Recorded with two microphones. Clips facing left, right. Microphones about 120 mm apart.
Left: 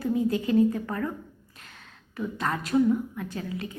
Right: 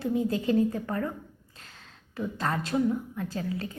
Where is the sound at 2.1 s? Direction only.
30° right (ahead or behind).